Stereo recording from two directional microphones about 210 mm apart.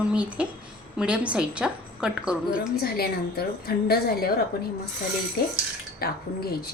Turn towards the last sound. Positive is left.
turn(degrees=45)  # may be behind; listen again after turning